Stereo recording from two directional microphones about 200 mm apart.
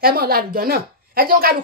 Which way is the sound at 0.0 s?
50° right (ahead or behind).